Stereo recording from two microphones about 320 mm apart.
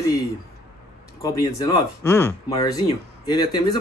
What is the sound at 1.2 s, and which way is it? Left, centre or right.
A man's voice, centre.